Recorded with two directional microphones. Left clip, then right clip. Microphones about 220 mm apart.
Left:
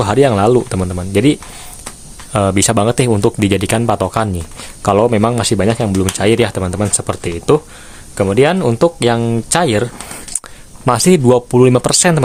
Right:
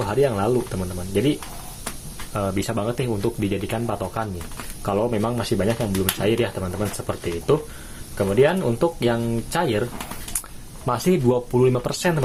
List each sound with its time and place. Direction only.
0.0 s speech: 45° left (ahead or behind)
2.3 s speech: 45° left (ahead or behind)
10.8 s speech: 40° left (ahead or behind)